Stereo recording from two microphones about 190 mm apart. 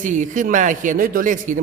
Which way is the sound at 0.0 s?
40° right (ahead or behind).